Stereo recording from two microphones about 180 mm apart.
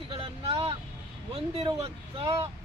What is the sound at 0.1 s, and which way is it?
Vehicle, 30° right (ahead or behind).